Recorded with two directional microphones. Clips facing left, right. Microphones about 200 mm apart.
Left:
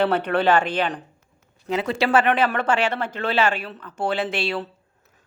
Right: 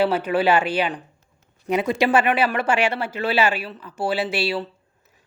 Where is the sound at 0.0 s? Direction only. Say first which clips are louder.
Even; 5° right (ahead or behind).